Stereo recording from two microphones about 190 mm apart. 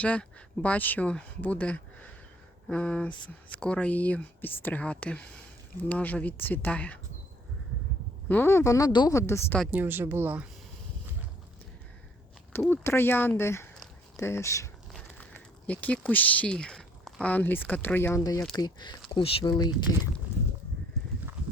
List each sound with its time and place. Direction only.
0.0 s speech: 5° left (ahead or behind)
8.3 s speech: 10° left (ahead or behind)
9.7 s speech: 10° right (ahead or behind)
12.5 s speech: 10° left (ahead or behind)